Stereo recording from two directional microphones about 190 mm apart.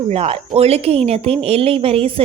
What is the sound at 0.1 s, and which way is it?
Speech, 35° right (ahead or behind).